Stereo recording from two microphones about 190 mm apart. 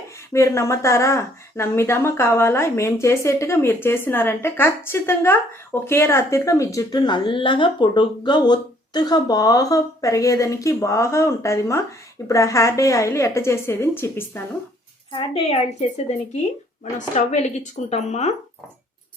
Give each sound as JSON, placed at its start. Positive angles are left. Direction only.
{"t": 0.3, "sound": "speech", "side_deg": 15}
{"t": 15.1, "sound": "speech", "side_deg": 30}